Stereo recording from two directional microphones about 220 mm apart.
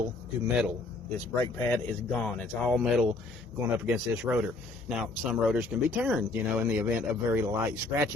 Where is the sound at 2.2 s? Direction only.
Centre (ahead or behind).